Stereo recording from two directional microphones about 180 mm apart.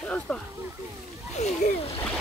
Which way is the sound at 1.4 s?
40° left (ahead or behind).